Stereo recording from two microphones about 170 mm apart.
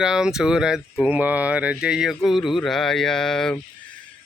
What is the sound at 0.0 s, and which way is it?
Speech, 5° right (ahead or behind).